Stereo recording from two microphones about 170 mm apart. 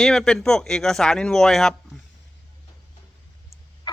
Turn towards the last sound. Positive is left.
turn(degrees=25)  # may be behind; listen again after turning